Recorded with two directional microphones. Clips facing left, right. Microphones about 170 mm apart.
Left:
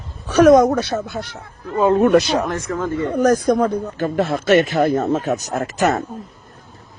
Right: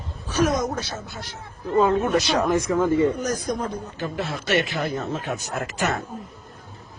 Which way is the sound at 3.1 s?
60° left (ahead or behind).